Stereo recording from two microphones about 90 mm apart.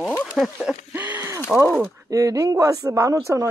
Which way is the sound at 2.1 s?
40° right (ahead or behind).